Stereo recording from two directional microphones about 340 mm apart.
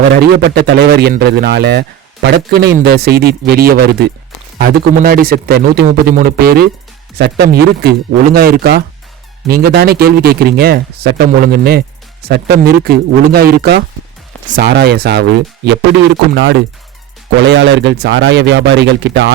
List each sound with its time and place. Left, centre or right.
0.2 s a man's voice: right